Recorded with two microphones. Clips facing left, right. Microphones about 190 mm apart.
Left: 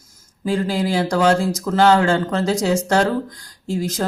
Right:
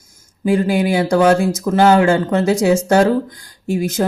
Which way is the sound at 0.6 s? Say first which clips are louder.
Right 4 dB; 20° right (ahead or behind).